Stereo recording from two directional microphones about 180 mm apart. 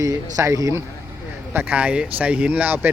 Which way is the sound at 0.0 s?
20° right (ahead or behind).